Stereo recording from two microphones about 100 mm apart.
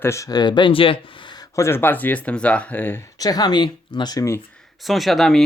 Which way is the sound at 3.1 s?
40° left (ahead or behind).